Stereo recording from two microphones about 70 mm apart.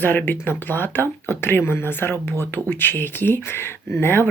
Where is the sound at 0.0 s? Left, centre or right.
Left.